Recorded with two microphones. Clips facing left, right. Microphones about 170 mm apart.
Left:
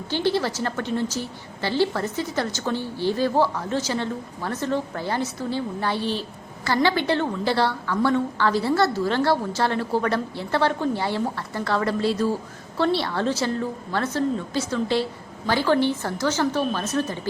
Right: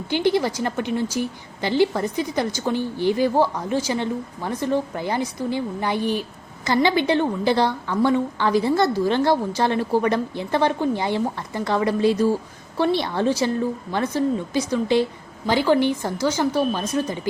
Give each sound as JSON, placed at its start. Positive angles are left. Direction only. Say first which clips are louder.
{"t": 0.1, "sound": "a woman's voice", "louder": "right 3 dB", "side_deg": -15}